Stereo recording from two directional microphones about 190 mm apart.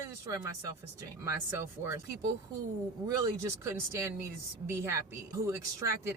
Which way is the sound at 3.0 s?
15° right (ahead or behind).